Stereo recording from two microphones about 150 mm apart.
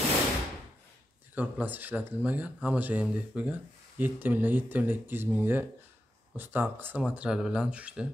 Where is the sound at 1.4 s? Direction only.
10° right (ahead or behind).